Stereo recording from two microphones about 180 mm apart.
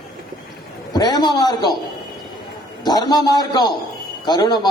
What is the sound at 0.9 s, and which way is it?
Speech, 20° left (ahead or behind).